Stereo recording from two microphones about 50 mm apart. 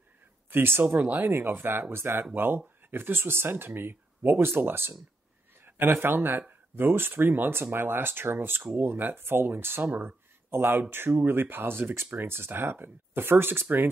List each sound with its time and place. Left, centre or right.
0.5 s speech: right
0.8 s speech: right
1.3 s speech: right
9.8 s speech: right